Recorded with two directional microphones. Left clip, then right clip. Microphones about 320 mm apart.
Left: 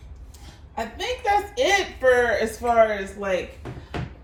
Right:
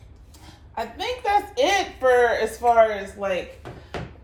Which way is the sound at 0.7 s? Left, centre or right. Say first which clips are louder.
Even; centre.